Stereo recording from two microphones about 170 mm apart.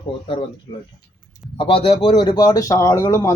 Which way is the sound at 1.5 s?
30° left (ahead or behind).